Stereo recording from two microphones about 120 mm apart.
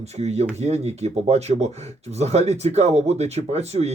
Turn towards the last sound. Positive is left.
turn(degrees=-60)  # may be behind; listen again after turning